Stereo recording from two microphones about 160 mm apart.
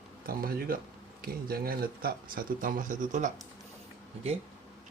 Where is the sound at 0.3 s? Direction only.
65° right (ahead or behind).